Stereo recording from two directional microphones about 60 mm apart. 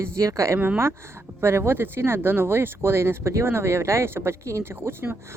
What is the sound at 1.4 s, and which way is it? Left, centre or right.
Speech, right.